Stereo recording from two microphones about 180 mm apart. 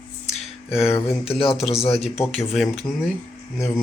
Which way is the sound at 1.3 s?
30° left (ahead or behind).